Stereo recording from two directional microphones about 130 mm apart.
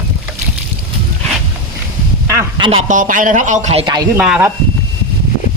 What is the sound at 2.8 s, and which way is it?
A man's voice, 85° right.